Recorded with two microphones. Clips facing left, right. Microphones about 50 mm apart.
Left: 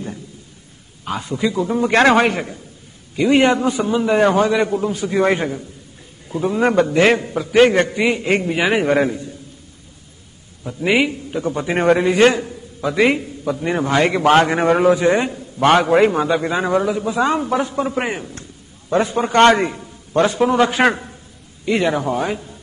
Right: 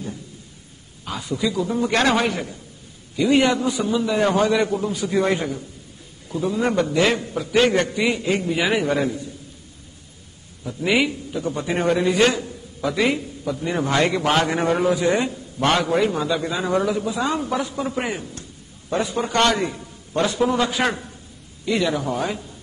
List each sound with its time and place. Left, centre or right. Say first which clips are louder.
1.0 s a man's voice: left 3 dB; left
1.8 s a man's voice: left 7 dB; left
4.6 s a man's voice: left 3 dB; centre
4.9 s a man's voice: left 4 dB; left
10.6 s a man's voice: left 3 dB; left
11.2 s a man's voice: left 3 dB; left
13.5 s a man's voice: left 4 dB; left
14.3 s a man's voice: left 6 dB; left
16.7 s a man's voice: even; centre
17.1 s a man's voice: left 5 dB; left